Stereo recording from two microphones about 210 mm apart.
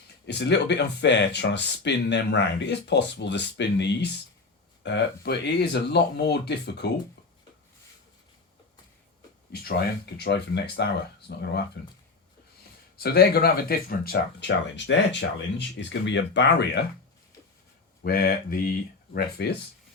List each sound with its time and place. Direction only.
0.3 s speech: 55° left (ahead or behind)
9.5 s speech: 50° left (ahead or behind)
13.0 s speech: 50° left (ahead or behind)
18.0 s speech: 45° left (ahead or behind)